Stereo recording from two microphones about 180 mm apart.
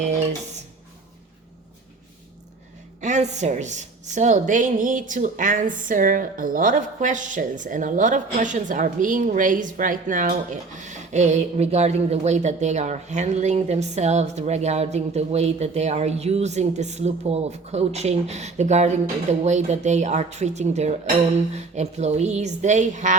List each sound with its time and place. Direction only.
3.0 s a woman's voice: 40° right (ahead or behind)